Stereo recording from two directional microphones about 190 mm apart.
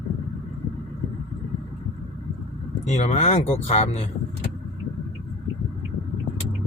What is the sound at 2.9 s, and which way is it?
Speech, 40° left (ahead or behind).